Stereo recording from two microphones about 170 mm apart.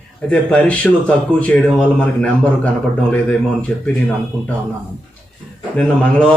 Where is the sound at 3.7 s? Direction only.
10° left (ahead or behind).